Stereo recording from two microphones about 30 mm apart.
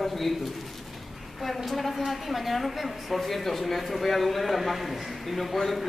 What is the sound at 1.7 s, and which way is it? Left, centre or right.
A woman's voice, centre.